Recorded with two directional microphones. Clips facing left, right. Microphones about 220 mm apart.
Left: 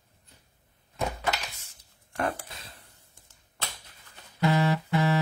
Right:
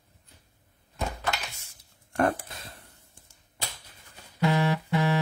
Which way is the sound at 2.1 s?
45° right (ahead or behind).